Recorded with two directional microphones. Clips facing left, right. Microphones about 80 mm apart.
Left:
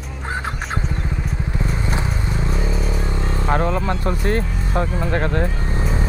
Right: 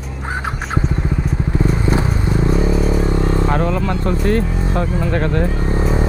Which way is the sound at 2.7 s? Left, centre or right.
Centre.